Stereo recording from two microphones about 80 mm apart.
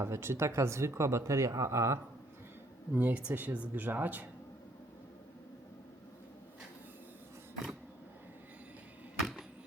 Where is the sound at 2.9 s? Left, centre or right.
Right.